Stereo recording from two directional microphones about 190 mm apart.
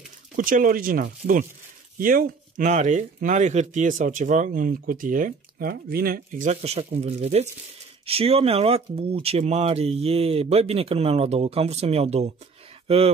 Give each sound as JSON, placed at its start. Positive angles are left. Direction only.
{"t": 0.4, "sound": "speech", "side_deg": -45}